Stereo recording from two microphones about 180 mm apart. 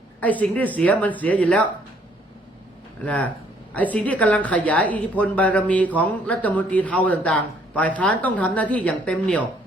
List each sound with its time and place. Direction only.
0.2 s a woman's voice: 10° left (ahead or behind)
3.0 s a woman's voice: 10° left (ahead or behind)